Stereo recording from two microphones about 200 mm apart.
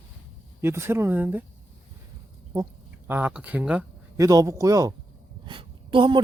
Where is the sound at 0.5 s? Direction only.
10° right (ahead or behind).